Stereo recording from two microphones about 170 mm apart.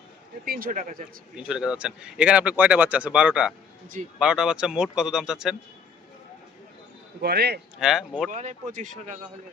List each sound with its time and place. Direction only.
0.4 s speech: 60° right (ahead or behind)
1.4 s speech: 5° right (ahead or behind)
7.2 s speech: 75° right (ahead or behind)
7.8 s speech: 5° right (ahead or behind)
8.3 s speech: 45° right (ahead or behind)